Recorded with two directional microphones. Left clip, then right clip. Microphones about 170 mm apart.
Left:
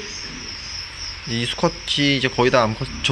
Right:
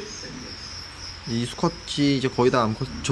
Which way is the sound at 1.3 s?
10° right (ahead or behind).